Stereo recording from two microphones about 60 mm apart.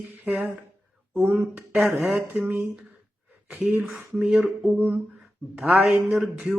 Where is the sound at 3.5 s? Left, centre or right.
Right.